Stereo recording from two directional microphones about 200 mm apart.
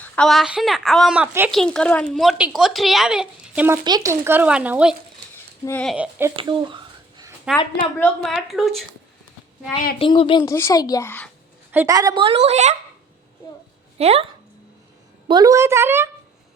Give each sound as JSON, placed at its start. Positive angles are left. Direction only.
{"t": 0.0, "sound": "speech", "side_deg": 5}
{"t": 3.8, "sound": "speech", "side_deg": -20}
{"t": 5.6, "sound": "speech", "side_deg": 5}
{"t": 6.3, "sound": "a sound", "side_deg": -25}
{"t": 7.5, "sound": "speech", "side_deg": -5}
{"t": 10.0, "sound": "speech", "side_deg": 25}
{"t": 10.5, "sound": "a child's voice", "side_deg": 15}
{"t": 11.7, "sound": "a woman's voice", "side_deg": -15}
{"t": 14.0, "sound": "a woman's voice", "side_deg": -30}
{"t": 15.3, "sound": "speech", "side_deg": -20}